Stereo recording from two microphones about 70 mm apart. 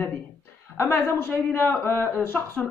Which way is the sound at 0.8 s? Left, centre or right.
Left.